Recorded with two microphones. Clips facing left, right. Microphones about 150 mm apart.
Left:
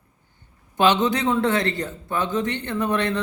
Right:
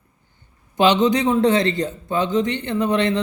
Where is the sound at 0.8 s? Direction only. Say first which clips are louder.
Right 3 dB; 15° right (ahead or behind).